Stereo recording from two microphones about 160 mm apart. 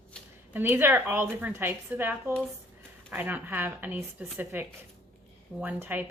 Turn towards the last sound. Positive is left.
turn(degrees=-10)  # may be behind; listen again after turning